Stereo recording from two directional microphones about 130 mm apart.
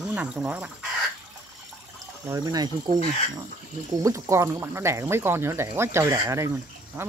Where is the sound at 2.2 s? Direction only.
25° right (ahead or behind).